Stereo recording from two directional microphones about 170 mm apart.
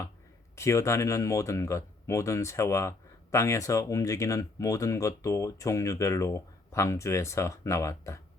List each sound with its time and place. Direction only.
0.5 s speech: 15° left (ahead or behind)